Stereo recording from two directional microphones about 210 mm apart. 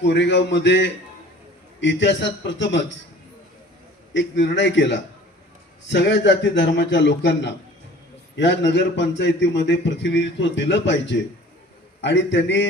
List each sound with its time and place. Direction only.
0.0 s a man's voice: 55° left (ahead or behind)
4.1 s a man's voice: 60° left (ahead or behind)